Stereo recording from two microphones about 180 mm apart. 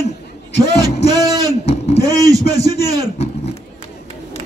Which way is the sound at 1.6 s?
35° left (ahead or behind).